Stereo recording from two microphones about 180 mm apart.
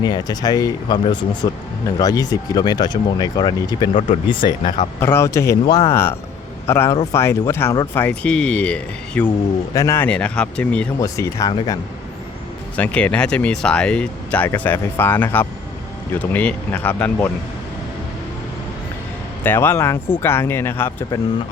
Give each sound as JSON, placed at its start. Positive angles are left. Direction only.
{"t": 0.0, "sound": "speech", "side_deg": 20}
{"t": 11.0, "sound": "speech", "side_deg": 20}
{"t": 12.7, "sound": "speech", "side_deg": 5}
{"t": 19.4, "sound": "speech", "side_deg": 10}